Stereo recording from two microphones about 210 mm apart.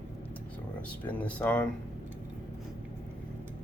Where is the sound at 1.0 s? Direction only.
5° left (ahead or behind).